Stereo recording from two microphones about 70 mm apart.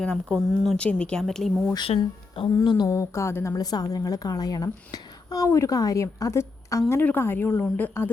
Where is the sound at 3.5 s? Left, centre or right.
Left.